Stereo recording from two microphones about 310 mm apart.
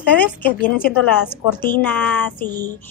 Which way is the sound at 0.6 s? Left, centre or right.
Left.